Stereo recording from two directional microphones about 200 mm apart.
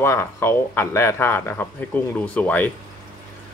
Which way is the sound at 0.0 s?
10° left (ahead or behind).